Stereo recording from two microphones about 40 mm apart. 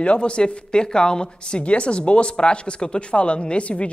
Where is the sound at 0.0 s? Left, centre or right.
Left.